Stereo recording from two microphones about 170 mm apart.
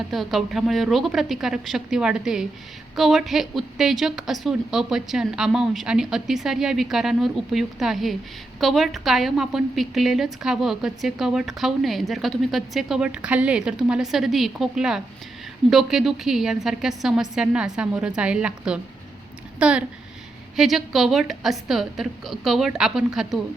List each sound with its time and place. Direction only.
0.1 s a woman's voice: centre (ahead or behind)